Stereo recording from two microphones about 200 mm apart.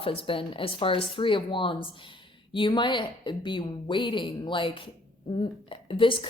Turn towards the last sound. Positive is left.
turn(degrees=25)  # may be behind; listen again after turning